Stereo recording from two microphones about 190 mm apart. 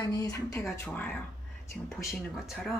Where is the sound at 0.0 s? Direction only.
20° left (ahead or behind).